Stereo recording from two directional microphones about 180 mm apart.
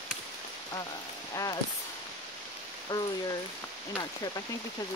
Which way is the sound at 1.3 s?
20° left (ahead or behind).